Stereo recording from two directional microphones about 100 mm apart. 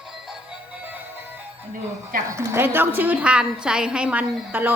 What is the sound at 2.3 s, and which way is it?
A woman's voice, 25° right (ahead or behind).